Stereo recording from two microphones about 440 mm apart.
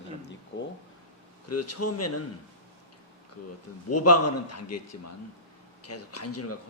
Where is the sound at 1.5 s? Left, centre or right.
Left.